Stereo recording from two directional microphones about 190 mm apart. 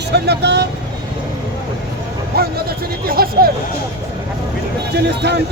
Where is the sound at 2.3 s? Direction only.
55° right (ahead or behind).